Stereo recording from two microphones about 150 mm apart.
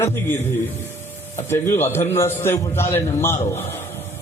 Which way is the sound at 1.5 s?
15° left (ahead or behind).